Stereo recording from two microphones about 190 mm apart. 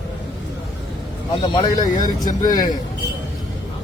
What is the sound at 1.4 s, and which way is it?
Speech, 25° left (ahead or behind).